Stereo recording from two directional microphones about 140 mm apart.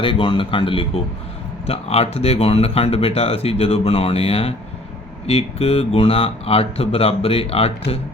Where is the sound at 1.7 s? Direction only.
45° left (ahead or behind).